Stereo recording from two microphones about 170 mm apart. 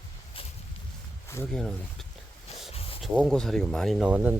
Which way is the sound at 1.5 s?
Centre (ahead or behind).